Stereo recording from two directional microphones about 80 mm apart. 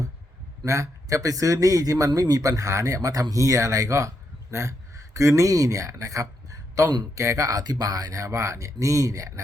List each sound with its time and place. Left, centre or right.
0.6 s speech: right